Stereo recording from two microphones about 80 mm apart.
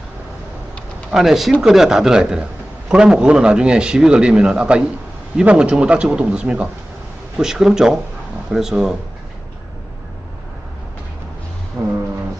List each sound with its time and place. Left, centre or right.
1.1 s speech: centre
11.8 s brass instrument: right